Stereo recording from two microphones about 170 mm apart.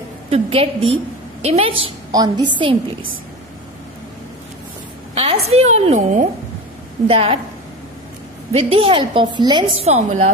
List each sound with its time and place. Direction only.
0.3 s a woman's voice: 35° right (ahead or behind)
5.1 s a woman's voice: 35° right (ahead or behind)
8.5 s a woman's voice: 35° right (ahead or behind)